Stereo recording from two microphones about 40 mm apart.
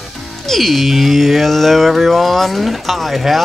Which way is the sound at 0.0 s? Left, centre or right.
Centre.